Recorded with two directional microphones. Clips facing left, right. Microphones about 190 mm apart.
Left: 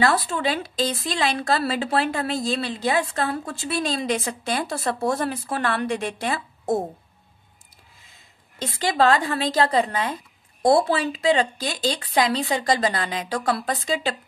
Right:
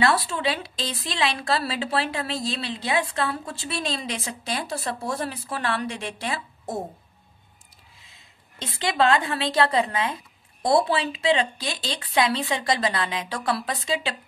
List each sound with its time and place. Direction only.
0.0 s a woman's voice: 45° left (ahead or behind)
8.5 s a woman's voice: 40° left (ahead or behind)